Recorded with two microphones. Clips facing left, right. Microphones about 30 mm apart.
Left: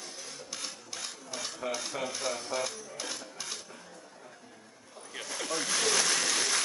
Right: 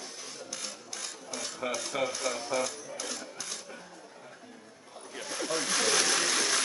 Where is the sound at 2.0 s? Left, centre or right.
Right.